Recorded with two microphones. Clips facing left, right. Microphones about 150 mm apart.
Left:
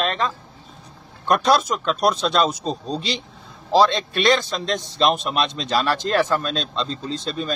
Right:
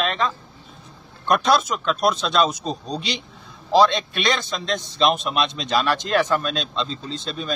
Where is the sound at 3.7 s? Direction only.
30° left (ahead or behind).